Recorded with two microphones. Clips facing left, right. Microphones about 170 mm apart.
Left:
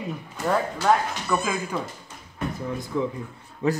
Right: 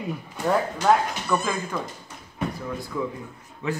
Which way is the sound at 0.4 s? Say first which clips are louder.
Right 1 dB; centre (ahead or behind).